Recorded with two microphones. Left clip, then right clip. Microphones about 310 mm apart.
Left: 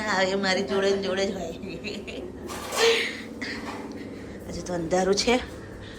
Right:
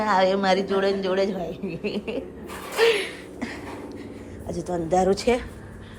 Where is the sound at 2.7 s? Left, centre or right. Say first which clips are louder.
Right 1 dB; centre.